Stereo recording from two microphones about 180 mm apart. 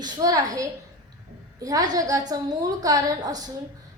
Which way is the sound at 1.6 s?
20° right (ahead or behind).